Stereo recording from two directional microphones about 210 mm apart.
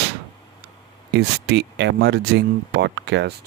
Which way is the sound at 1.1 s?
55° right (ahead or behind).